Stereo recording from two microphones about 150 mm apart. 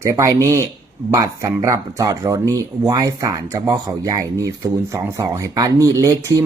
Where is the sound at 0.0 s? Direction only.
20° right (ahead or behind).